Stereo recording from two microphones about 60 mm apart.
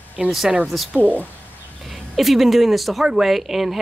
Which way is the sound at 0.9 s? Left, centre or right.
Right.